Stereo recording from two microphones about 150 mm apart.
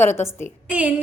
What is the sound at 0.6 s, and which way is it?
Speech, 10° right (ahead or behind).